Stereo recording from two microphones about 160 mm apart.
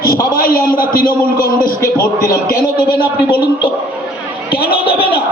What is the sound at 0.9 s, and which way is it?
A man's voice, 65° left (ahead or behind).